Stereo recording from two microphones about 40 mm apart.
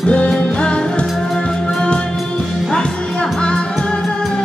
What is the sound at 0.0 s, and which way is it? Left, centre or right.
Music, left.